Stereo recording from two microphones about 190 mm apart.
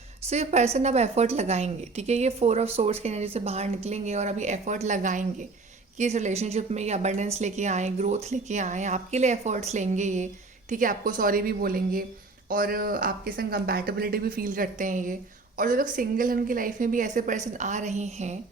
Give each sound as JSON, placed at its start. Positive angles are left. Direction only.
{"t": 0.3, "sound": "a woman's voice", "side_deg": -35}